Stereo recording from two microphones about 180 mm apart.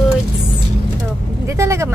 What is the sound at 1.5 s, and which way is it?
Vehicle, 15° right (ahead or behind).